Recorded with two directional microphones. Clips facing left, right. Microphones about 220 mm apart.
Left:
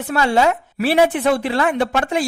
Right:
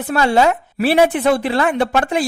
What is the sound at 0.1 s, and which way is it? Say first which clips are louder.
A woman's voice: right 2 dB; 35° right (ahead or behind).